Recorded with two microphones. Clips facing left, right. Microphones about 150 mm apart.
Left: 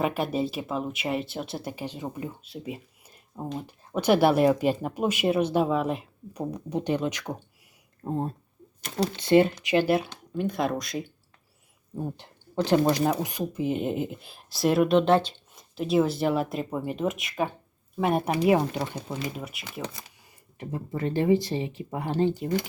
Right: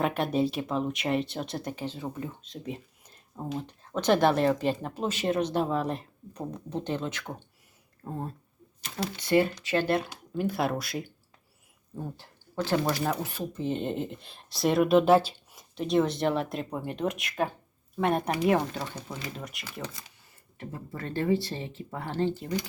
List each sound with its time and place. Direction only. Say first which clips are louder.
0.0 s speech: even; 5° left (ahead or behind); by 9.5 s 25° left (ahead or behind)
9.6 s speech: left 4 dB; 10° left (ahead or behind)
10.1 s speech: left 1 dB; 5° right (ahead or behind)
11.9 s speech: left 5 dB; 20° left (ahead or behind)
19.4 s speech: left 3 dB; 5° left (ahead or behind)
20.6 s speech: left 7 dB; 20° left (ahead or behind)